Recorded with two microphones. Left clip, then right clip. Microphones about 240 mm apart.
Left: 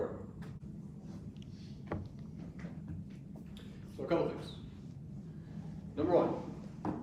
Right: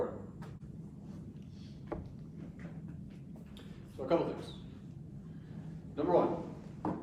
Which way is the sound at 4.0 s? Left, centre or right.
Centre.